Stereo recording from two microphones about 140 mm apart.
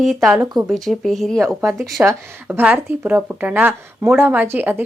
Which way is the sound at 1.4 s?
20° right (ahead or behind).